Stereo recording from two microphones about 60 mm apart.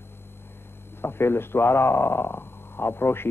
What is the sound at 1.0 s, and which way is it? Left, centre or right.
Speech, left.